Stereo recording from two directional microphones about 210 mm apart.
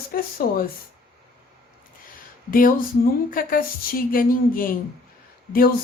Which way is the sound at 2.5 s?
40° left (ahead or behind).